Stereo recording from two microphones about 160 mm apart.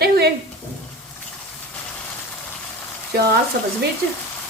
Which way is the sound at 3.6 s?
75° right (ahead or behind).